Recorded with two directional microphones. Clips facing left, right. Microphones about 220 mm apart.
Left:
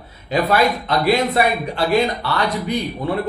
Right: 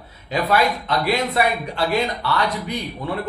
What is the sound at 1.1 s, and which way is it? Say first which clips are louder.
A man's voice: left 4 dB; 35° left (ahead or behind).